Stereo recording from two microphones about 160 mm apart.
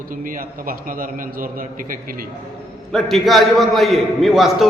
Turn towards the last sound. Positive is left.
turn(degrees=0)  # may be behind; listen again after turning